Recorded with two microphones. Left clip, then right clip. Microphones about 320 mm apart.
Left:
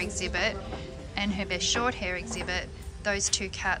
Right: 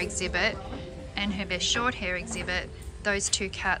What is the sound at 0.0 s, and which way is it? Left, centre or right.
A woman's voice, centre.